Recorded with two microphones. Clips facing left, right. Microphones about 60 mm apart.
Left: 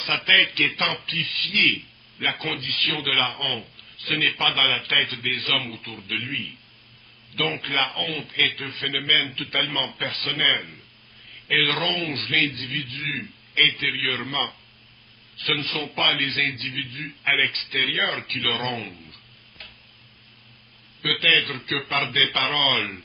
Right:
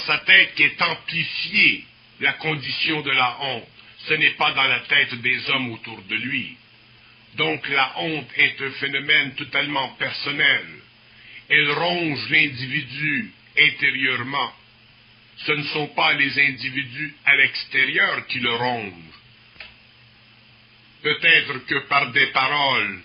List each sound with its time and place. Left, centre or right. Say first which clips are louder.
0.0 s a man's voice: right 4 dB; right
21.0 s a man's voice: right 3 dB; right